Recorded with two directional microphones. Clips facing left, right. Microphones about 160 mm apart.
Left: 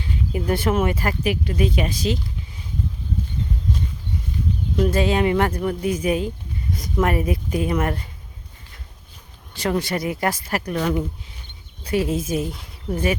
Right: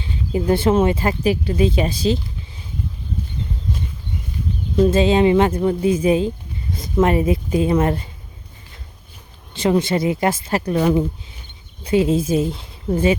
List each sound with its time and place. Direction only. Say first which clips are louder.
0.0 s speech: right 4 dB; 25° right (ahead or behind)
4.8 s speech: right 5 dB; 25° right (ahead or behind)
9.5 s speech: right 5 dB; 20° right (ahead or behind)